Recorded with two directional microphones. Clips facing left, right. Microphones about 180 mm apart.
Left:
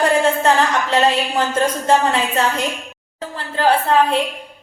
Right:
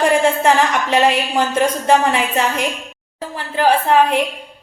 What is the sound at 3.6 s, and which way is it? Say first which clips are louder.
Speech: right 1 dB; 15° right (ahead or behind).